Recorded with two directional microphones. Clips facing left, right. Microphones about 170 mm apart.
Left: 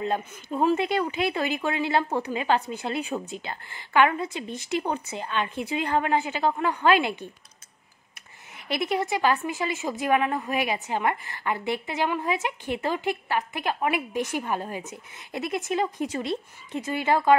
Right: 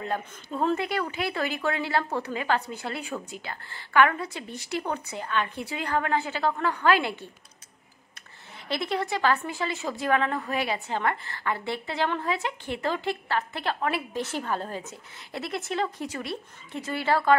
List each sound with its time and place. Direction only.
0.0 s a woman's voice: 20° left (ahead or behind)
8.6 s a woman's voice: 20° left (ahead or behind)